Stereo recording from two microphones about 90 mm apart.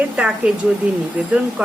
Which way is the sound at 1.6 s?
15° right (ahead or behind).